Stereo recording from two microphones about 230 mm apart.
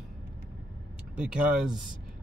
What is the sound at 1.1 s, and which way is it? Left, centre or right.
Speech, centre.